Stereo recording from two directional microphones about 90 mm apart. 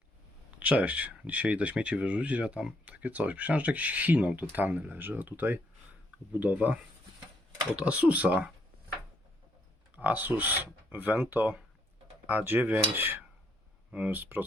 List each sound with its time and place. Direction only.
0.6 s speech: 15° right (ahead or behind)
7.8 s speech: 15° right (ahead or behind)
9.9 s speech: 20° right (ahead or behind)